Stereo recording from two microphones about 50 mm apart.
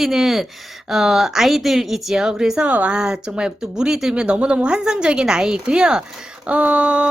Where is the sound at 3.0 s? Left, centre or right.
Centre.